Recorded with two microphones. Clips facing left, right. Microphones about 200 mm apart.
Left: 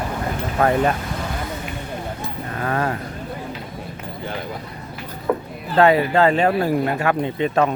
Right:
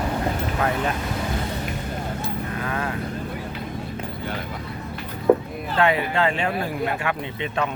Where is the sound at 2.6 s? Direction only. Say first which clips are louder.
Left 8 dB; 45° left (ahead or behind).